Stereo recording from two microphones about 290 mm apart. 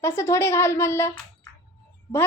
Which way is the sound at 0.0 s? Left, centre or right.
Centre.